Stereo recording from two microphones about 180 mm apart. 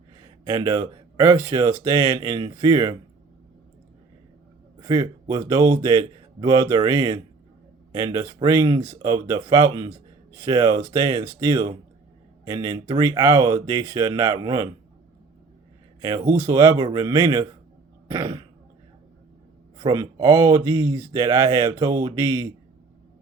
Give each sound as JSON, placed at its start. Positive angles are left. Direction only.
{"t": 0.2, "sound": "speech", "side_deg": -25}
{"t": 4.8, "sound": "speech", "side_deg": -25}
{"t": 5.7, "sound": "speech", "side_deg": -30}
{"t": 6.0, "sound": "speech", "side_deg": -20}
{"t": 16.0, "sound": "speech", "side_deg": -20}
{"t": 19.8, "sound": "speech", "side_deg": -25}